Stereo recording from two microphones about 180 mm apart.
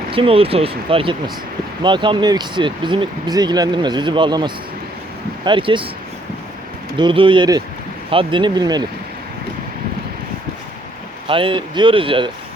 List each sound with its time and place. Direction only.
0.1 s speech: 30° right (ahead or behind)
6.9 s speech: 30° right (ahead or behind)
11.3 s speech: 30° right (ahead or behind)